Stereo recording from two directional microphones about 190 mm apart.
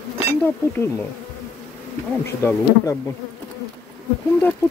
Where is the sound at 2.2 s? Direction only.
15° left (ahead or behind).